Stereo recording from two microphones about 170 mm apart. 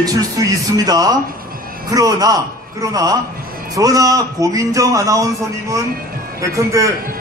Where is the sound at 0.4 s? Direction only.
20° right (ahead or behind).